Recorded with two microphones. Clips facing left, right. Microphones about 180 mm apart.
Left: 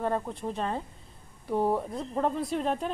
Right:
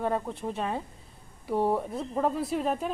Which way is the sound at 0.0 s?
Centre (ahead or behind).